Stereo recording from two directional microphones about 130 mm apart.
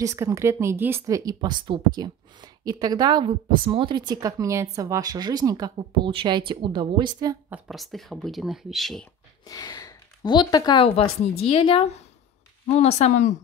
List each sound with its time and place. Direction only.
0.0 s a woman's voice: 25° right (ahead or behind)
7.6 s speech: centre (ahead or behind)
9.5 s speech: 30° left (ahead or behind)
11.0 s a woman's voice: 50° left (ahead or behind)